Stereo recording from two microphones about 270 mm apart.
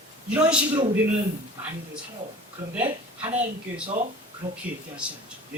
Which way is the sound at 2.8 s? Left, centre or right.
Right.